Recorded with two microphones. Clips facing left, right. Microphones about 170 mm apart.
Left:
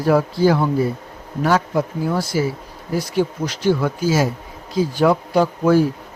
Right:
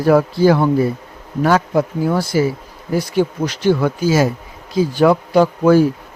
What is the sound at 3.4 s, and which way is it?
Speech, 70° right (ahead or behind).